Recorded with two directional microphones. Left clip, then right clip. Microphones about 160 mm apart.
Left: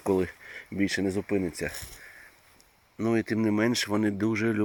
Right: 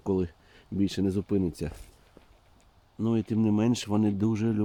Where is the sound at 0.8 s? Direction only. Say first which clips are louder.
Left 1 dB; 25° right (ahead or behind).